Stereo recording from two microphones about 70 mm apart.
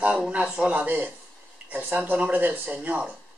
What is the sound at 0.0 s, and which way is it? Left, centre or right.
Speech, centre.